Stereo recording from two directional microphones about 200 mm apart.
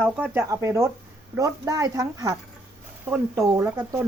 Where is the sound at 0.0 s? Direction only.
10° right (ahead or behind).